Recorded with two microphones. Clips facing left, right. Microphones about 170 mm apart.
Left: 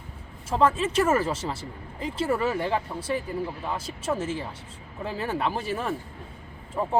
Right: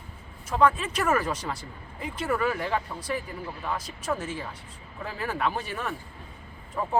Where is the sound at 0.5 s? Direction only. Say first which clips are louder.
Left 2 dB; 30° left (ahead or behind).